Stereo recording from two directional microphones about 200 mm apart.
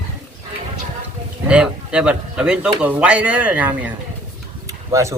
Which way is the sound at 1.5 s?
5° right (ahead or behind).